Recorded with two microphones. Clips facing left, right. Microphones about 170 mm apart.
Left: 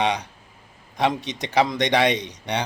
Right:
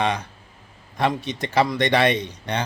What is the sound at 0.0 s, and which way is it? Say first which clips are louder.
Speech: even; 15° left (ahead or behind).